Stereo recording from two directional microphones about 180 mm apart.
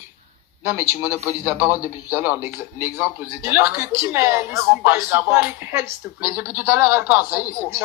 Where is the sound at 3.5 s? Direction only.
10° right (ahead or behind).